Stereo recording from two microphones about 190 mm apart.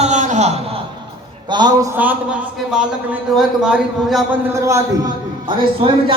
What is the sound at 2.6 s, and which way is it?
A man's voice, 5° right (ahead or behind).